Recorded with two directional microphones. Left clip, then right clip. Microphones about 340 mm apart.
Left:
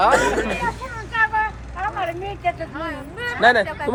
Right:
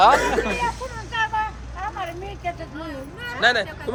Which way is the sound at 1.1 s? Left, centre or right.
Centre.